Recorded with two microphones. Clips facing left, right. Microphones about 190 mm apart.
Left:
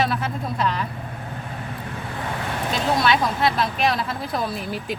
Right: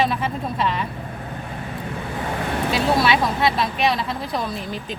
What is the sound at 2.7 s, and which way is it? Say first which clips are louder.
Speech: right 1 dB; 5° right (ahead or behind).